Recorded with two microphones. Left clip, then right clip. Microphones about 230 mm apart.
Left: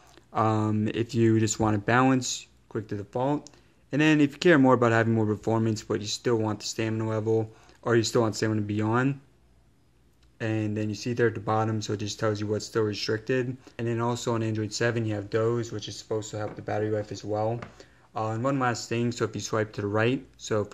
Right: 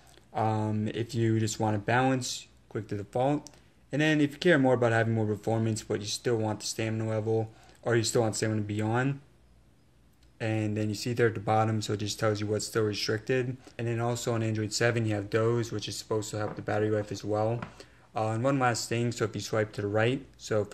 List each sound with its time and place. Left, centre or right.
0.3 s speech: left
2.9 s speech: centre
10.4 s speech: centre